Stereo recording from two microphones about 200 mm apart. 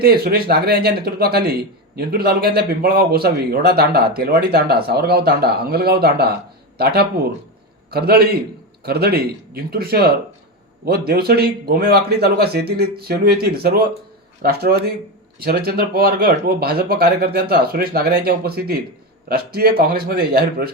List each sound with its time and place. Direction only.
0.0 s speech: 50° right (ahead or behind)